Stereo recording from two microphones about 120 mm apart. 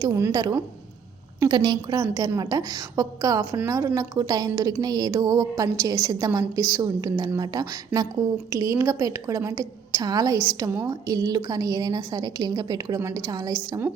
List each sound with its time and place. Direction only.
0.0 s a woman's voice: 25° right (ahead or behind)